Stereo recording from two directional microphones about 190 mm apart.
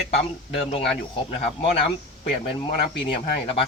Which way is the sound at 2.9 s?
30° left (ahead or behind).